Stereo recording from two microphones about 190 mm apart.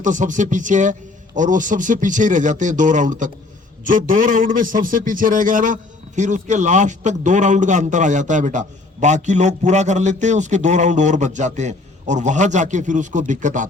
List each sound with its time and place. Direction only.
0.0 s a man's voice: 40° right (ahead or behind)